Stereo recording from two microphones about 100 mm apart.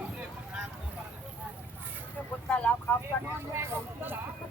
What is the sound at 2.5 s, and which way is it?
Speech, 15° left (ahead or behind).